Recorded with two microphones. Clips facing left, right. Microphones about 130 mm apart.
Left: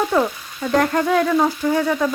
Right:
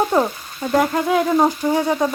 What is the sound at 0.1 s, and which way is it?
Speech, 20° right (ahead or behind).